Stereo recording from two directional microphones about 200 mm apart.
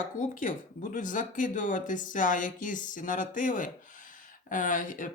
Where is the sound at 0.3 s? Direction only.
40° left (ahead or behind).